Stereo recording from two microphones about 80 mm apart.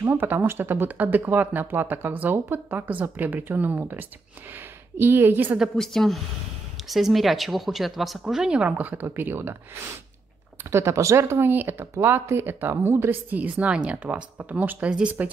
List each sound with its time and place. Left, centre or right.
0.0 s speech: right
5.8 s speech: centre; by 9.6 s right
10.7 s speech: right; by 15.2 s centre